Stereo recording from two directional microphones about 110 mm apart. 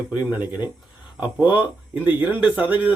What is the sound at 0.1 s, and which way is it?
Speech, 15° right (ahead or behind).